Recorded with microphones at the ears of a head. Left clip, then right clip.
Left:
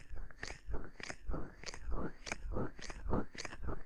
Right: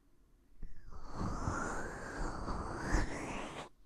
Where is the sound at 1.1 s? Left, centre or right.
Right.